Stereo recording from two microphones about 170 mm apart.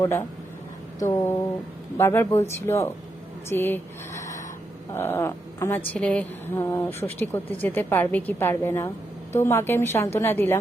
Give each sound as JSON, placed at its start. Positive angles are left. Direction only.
{"t": 0.0, "sound": "a woman's voice", "side_deg": 15}